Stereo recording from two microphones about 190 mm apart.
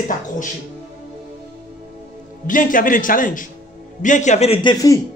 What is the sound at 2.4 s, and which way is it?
A man's voice, 45° left (ahead or behind).